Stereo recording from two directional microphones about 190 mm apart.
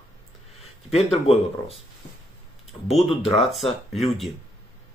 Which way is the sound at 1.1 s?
30° left (ahead or behind).